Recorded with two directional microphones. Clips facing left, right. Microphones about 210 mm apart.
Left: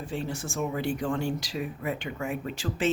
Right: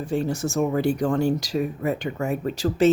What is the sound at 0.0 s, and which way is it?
Speech, 45° right (ahead or behind).